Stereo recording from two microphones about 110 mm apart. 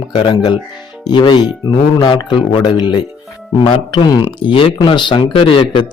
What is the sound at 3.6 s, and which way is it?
Speech, 55° left (ahead or behind).